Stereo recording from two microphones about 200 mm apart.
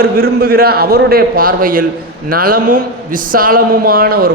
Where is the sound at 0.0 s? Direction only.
50° right (ahead or behind).